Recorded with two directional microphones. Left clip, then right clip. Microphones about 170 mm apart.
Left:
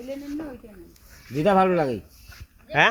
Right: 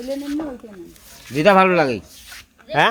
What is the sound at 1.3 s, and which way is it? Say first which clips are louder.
Speech: right 7 dB; 20° right (ahead or behind).